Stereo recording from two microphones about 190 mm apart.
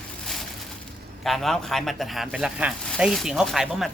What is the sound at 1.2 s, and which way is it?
Speech, centre (ahead or behind).